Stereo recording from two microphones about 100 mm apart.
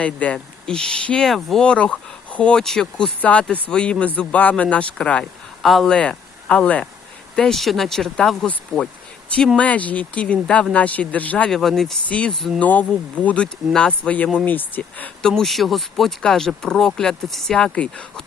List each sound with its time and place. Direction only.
0.0 s a man's voice: 15° left (ahead or behind)
15.3 s speech: centre (ahead or behind)